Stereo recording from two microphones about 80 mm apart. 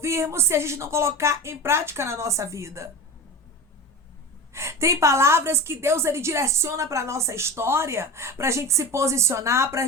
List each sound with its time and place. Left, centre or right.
0.0 s a woman's voice: right
4.5 s a woman's voice: right